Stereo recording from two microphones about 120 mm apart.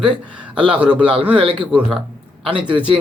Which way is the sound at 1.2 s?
50° right (ahead or behind).